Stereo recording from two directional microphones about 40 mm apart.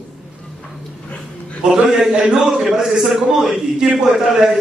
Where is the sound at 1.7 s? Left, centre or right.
Centre.